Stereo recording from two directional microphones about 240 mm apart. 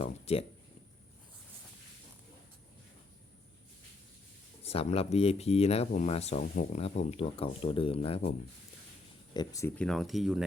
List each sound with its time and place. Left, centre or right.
0.0 s a sound: left
4.6 s speech: left
9.3 s speech: centre